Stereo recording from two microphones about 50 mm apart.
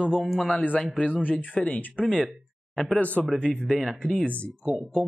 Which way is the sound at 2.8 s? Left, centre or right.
Left.